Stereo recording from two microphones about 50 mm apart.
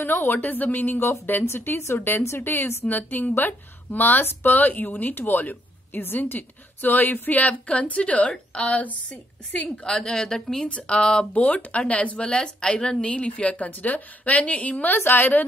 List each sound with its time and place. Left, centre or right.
0.0 s speech: left
2.9 s speech: left
9.8 s a woman's voice: centre; by 12.2 s left
12.2 s a woman's voice: centre; by 15.4 s left